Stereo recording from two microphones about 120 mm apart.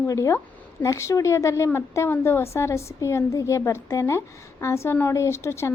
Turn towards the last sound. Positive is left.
turn(degrees=20)  # may be behind; listen again after turning